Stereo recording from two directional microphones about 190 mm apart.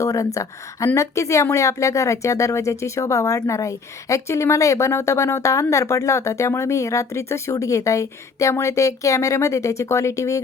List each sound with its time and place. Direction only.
0.0 s a woman's voice: 15° left (ahead or behind)